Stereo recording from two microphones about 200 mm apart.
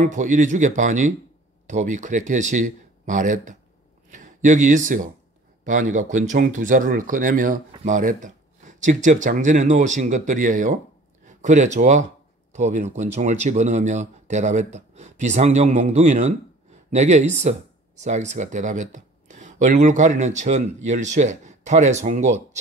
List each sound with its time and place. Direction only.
0.0 s speech: 40° right (ahead or behind)